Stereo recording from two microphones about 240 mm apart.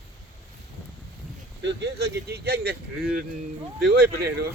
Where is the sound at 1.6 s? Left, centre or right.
Right.